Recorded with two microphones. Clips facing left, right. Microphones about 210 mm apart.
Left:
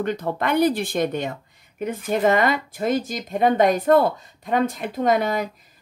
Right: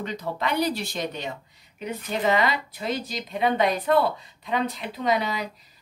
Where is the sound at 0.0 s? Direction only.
55° left (ahead or behind).